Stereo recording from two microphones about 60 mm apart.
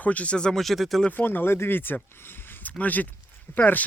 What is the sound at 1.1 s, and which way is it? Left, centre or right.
Speech, left.